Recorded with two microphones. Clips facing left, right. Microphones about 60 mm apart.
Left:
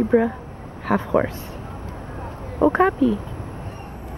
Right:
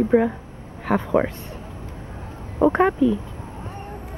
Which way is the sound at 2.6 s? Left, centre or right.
Centre.